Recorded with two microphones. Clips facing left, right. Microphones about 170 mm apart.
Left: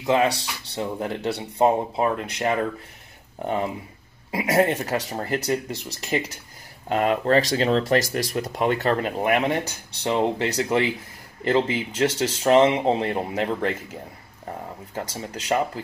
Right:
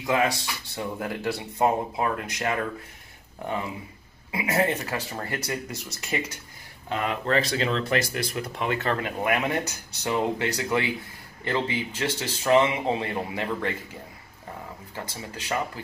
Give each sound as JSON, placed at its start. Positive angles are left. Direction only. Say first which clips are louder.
{"t": 0.0, "sound": "speech", "louder": "left 4 dB", "side_deg": 25}
{"t": 3.4, "sound": "speech", "louder": "left 5 dB", "side_deg": 40}
{"t": 6.9, "sound": "speech", "louder": "left 6 dB", "side_deg": 40}
{"t": 15.0, "sound": "speech", "louder": "left 5 dB", "side_deg": 40}